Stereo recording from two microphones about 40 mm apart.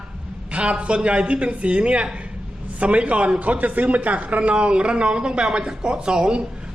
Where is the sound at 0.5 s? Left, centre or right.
Right.